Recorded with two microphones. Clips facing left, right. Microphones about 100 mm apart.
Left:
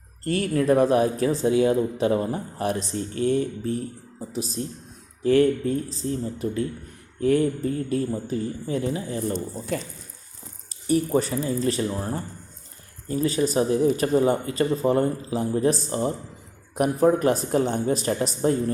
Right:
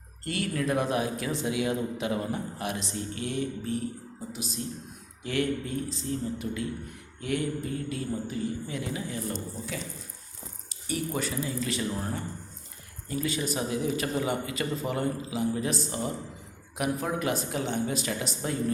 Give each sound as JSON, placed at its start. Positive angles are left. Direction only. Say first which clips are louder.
{"t": 0.3, "sound": "speech", "louder": "left 8 dB", "side_deg": 35}
{"t": 9.7, "sound": "speech", "louder": "left 9 dB", "side_deg": 50}
{"t": 10.8, "sound": "speech", "louder": "left 9 dB", "side_deg": 40}